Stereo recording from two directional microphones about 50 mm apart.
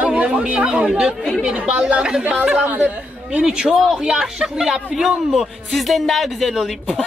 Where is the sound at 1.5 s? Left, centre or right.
Right.